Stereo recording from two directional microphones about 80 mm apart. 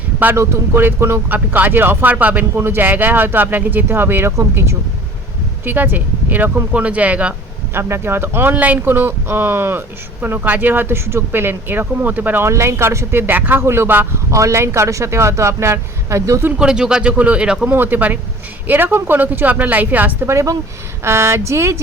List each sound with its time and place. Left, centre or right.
0.3 s speech: right
7.7 s speech: right
12.5 s speech: right
14.3 s speech: right
16.6 s speech: centre
17.7 s speech: right
20.2 s speech: right